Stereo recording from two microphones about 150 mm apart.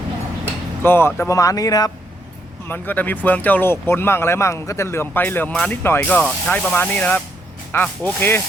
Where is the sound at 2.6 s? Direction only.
10° left (ahead or behind).